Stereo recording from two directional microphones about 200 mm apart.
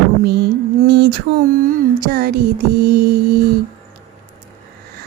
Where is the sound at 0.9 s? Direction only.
50° right (ahead or behind).